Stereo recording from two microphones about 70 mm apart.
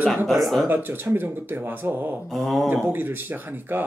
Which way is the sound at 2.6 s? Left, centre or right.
Right.